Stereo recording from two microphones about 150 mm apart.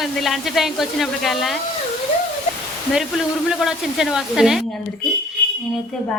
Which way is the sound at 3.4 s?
5° right (ahead or behind).